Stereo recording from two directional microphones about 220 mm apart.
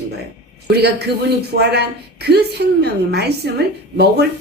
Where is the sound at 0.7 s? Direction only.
50° right (ahead or behind).